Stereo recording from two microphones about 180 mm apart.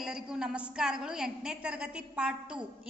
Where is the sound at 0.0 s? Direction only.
5° right (ahead or behind).